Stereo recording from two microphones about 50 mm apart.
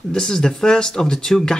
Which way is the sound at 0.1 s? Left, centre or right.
Centre.